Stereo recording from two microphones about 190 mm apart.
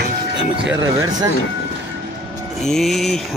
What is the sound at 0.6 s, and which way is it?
Speech, 10° right (ahead or behind).